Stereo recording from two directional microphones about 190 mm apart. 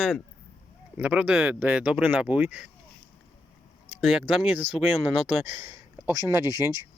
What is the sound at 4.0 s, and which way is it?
Speech, 5° right (ahead or behind).